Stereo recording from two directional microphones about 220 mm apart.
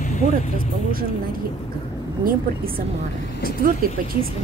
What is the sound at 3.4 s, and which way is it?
Speech, 40° right (ahead or behind).